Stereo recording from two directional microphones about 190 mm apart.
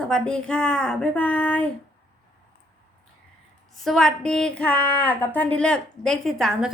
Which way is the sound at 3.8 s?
Centre (ahead or behind).